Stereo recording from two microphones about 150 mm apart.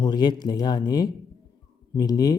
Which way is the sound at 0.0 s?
30° left (ahead or behind).